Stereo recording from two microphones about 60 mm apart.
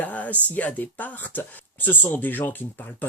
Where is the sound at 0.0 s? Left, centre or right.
Left.